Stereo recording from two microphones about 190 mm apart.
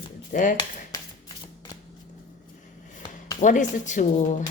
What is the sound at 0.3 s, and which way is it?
Speech, 45° left (ahead or behind).